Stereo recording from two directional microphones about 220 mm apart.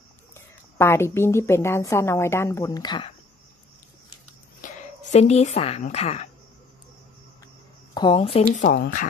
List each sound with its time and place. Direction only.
0.3 s a woman's voice: 10° left (ahead or behind)
4.6 s a woman's voice: 35° left (ahead or behind)
7.9 s speech: 20° left (ahead or behind)
8.5 s speech: 45° left (ahead or behind)